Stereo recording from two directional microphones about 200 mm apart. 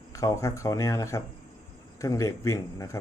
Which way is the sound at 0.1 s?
15° left (ahead or behind).